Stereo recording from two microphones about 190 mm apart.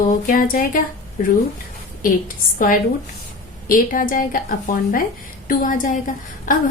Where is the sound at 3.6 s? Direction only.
45° left (ahead or behind).